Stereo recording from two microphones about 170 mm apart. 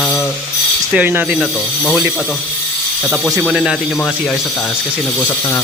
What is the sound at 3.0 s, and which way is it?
Speech, centre (ahead or behind).